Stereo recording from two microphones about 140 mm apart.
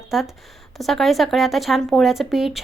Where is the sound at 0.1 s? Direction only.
Centre (ahead or behind).